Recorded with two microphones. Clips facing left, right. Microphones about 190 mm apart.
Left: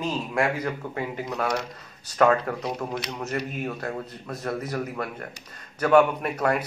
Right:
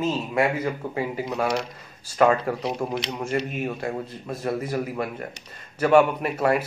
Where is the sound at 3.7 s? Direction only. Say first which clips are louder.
Right 2 dB; 10° right (ahead or behind).